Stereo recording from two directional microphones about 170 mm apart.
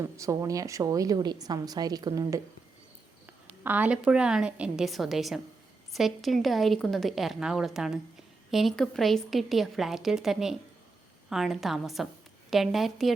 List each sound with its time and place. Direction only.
0.0 s a woman's voice: 20° right (ahead or behind)
3.6 s a woman's voice: 10° right (ahead or behind)